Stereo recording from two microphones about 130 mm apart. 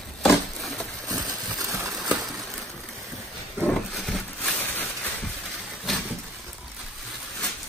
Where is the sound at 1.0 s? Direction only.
30° right (ahead or behind).